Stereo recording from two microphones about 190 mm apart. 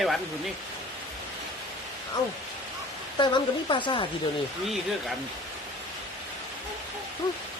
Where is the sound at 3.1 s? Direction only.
25° left (ahead or behind).